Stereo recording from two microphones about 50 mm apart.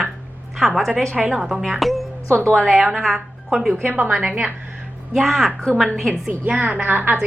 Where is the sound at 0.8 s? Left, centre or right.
Centre.